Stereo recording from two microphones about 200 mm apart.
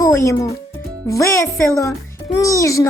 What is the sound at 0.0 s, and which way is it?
Music, 15° left (ahead or behind).